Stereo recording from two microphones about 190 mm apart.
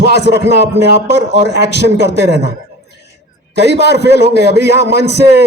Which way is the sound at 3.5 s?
60° right (ahead or behind).